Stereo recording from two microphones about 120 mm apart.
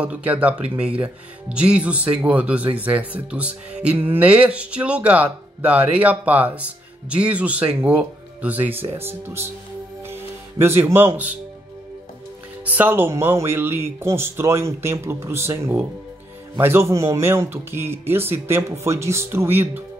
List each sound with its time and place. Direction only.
0.0 s speech: 10° right (ahead or behind)
10.6 s speech: 20° right (ahead or behind)
12.6 s speech: 15° right (ahead or behind)